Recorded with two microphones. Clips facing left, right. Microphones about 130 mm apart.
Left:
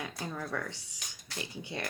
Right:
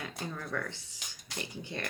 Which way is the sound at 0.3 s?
15° left (ahead or behind).